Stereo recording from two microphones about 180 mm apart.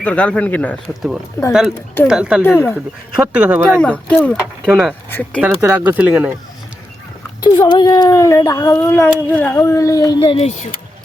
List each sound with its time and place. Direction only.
0.0 s speech: 5° left (ahead or behind)
2.4 s speech: 10° left (ahead or behind)
2.7 s speech: 5° right (ahead or behind)
3.6 s speech: 5° left (ahead or behind)
4.6 s speech: 5° right (ahead or behind)
7.4 s speech: 25° left (ahead or behind)